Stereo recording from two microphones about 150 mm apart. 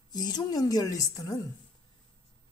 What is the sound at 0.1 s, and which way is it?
A woman's voice, 25° left (ahead or behind).